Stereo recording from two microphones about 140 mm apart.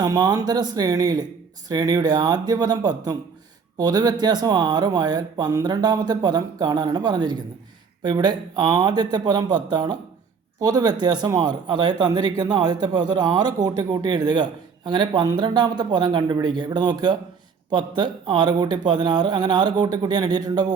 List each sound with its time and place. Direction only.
0.0 s speech: 30° right (ahead or behind)